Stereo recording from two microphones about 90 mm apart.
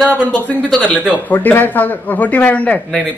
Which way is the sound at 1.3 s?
20° left (ahead or behind).